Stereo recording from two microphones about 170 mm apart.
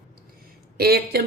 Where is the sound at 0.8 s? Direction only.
65° right (ahead or behind).